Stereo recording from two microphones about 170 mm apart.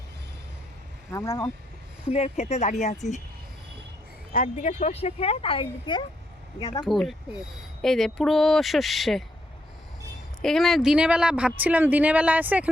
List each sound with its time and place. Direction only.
1.1 s speech: 20° left (ahead or behind)
2.0 s speech: 40° left (ahead or behind)
4.3 s speech: 50° left (ahead or behind); by 6.0 s 30° left (ahead or behind)
6.8 s speech: centre (ahead or behind)
10.4 s speech: centre (ahead or behind)